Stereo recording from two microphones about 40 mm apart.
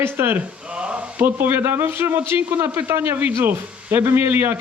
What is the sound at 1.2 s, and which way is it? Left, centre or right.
Speech, right.